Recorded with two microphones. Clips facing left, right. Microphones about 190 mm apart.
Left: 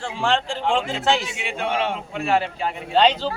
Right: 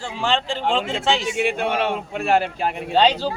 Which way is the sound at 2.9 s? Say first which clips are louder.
Even; 5° right (ahead or behind).